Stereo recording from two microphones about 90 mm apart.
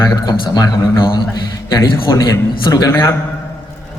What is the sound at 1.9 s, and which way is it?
Speech, 70° left (ahead or behind).